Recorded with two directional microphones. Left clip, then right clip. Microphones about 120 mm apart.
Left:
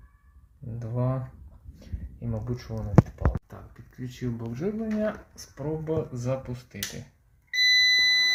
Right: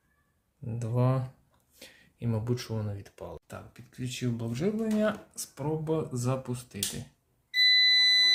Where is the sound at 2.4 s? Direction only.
25° right (ahead or behind).